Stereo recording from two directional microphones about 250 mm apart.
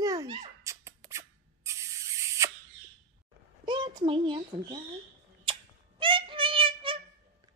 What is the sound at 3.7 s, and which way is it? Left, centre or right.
A child's voice, centre.